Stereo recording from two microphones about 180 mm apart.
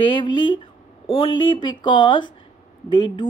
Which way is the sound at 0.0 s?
25° left (ahead or behind).